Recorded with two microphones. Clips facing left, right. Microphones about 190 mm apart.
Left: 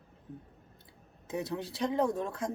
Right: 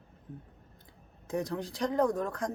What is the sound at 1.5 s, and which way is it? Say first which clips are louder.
Speech: left 1 dB; 25° left (ahead or behind).